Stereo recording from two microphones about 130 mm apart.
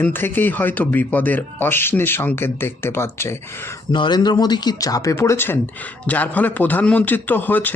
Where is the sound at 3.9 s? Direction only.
35° left (ahead or behind).